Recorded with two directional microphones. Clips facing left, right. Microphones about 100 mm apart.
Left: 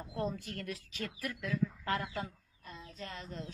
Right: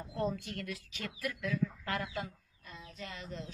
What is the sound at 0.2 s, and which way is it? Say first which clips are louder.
A woman's voice: right 2 dB; 35° left (ahead or behind).